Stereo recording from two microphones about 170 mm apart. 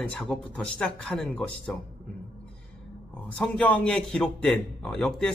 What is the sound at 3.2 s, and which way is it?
A man's voice, 5° left (ahead or behind).